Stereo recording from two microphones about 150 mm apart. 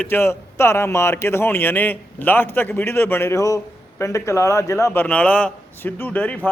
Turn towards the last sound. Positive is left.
turn(degrees=10)  # may be behind; listen again after turning